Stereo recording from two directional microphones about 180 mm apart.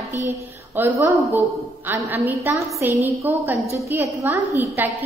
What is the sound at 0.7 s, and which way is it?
A woman's voice, 10° right (ahead or behind).